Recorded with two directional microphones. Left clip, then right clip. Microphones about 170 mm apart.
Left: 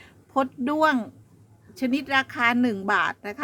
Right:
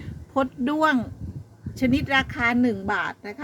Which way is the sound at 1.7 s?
10° left (ahead or behind).